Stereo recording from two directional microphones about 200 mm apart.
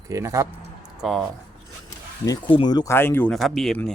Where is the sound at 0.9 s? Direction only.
Centre (ahead or behind).